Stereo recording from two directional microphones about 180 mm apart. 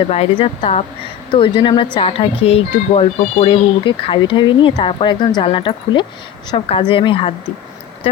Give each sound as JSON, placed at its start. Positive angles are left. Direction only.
{"t": 0.1, "sound": "speech", "side_deg": 35}